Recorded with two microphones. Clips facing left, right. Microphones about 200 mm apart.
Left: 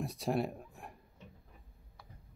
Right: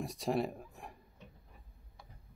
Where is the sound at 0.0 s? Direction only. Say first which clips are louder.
Even; centre (ahead or behind).